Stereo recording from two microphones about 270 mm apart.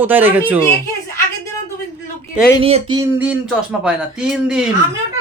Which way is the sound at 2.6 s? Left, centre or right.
Centre.